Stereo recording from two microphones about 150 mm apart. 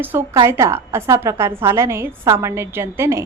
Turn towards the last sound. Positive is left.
turn(degrees=-20)  # may be behind; listen again after turning